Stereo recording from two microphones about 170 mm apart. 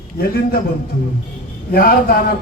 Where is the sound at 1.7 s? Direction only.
60° left (ahead or behind).